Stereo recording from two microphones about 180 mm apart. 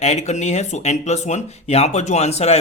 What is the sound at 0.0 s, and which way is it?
Speech, 40° left (ahead or behind).